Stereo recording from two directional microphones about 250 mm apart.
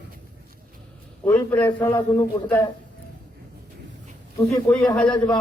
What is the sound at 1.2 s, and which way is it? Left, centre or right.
A man's voice, centre.